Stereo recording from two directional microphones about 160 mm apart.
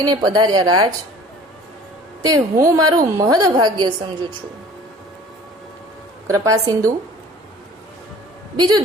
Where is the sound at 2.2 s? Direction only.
25° right (ahead or behind).